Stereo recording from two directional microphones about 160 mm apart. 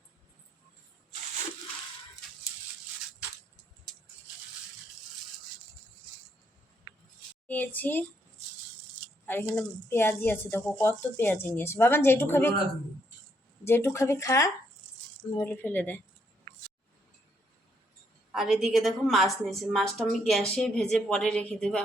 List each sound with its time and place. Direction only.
7.4 s a child's voice: 10° left (ahead or behind)
9.2 s speech: 10° left (ahead or behind)
13.7 s speech: 15° left (ahead or behind)
18.3 s a woman's voice: centre (ahead or behind)